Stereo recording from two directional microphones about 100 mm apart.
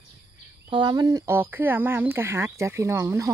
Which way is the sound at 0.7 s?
55° right (ahead or behind).